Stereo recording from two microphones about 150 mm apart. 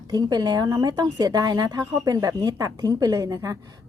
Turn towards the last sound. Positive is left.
turn(degrees=-25)  # may be behind; listen again after turning